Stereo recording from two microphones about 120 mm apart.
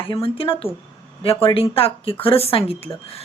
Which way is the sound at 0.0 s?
50° left (ahead or behind).